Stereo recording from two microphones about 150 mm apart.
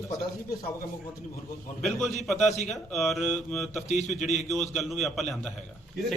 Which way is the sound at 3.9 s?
50° left (ahead or behind).